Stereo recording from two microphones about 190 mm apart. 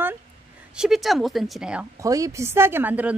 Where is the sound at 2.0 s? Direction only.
15° right (ahead or behind).